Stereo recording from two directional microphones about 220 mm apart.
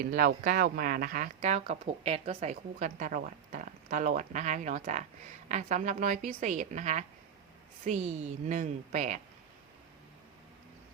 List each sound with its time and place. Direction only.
0.1 s speech: 40° right (ahead or behind)